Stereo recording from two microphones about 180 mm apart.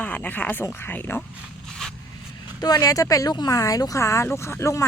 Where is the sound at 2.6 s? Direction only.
20° left (ahead or behind).